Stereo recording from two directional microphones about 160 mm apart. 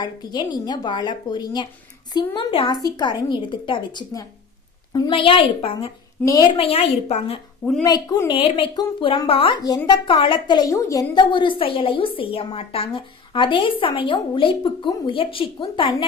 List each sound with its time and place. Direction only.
0.0 s a woman's voice: 25° left (ahead or behind)
7.6 s a woman's voice: 5° left (ahead or behind)
7.9 s a woman's voice: 20° left (ahead or behind)
9.6 s a woman's voice: 25° left (ahead or behind)